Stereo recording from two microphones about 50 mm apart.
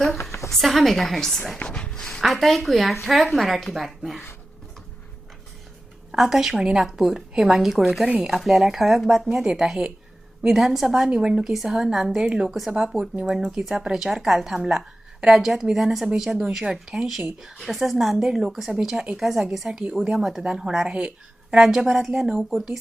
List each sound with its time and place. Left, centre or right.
0.2 s a sound: left
0.5 s speech: centre
1.5 s a sound: centre
2.2 s speech: centre
6.1 s a woman's voice: centre
11.1 s a woman's voice: centre
11.5 s a woman's voice: centre
13.0 s speech: right
13.7 s a woman's voice: centre
19.8 s speech: right
20.1 s a woman's voice: centre